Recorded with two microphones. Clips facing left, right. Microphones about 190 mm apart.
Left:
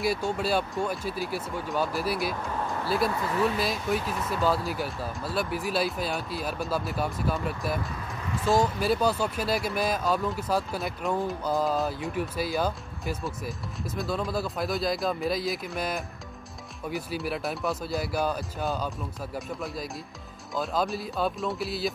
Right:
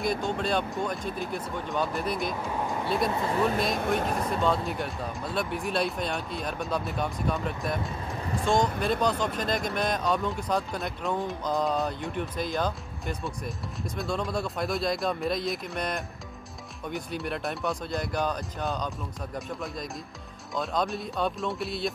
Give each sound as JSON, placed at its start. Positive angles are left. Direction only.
{"t": 0.0, "sound": "speech", "side_deg": 5}
{"t": 2.5, "sound": "vehicle", "side_deg": -15}
{"t": 3.1, "sound": "speech", "side_deg": -25}
{"t": 4.3, "sound": "speech", "side_deg": 5}